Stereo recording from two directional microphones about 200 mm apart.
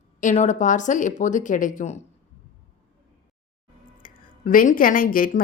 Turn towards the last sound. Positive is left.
turn(degrees=45)  # may be behind; listen again after turning